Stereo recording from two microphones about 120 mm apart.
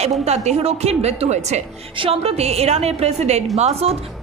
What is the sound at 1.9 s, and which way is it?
A woman's voice, 55° right (ahead or behind).